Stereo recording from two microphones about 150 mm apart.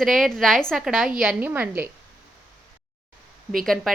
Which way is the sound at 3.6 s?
Centre (ahead or behind).